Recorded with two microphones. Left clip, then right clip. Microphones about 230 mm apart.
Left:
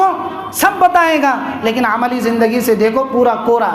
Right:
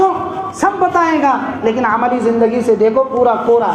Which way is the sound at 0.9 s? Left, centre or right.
Left.